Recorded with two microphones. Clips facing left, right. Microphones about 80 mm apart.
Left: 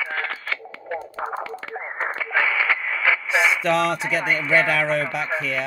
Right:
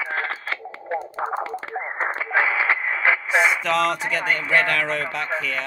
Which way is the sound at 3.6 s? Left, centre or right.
Centre.